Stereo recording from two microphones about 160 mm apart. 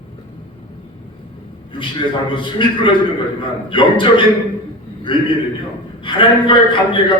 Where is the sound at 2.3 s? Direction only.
30° left (ahead or behind).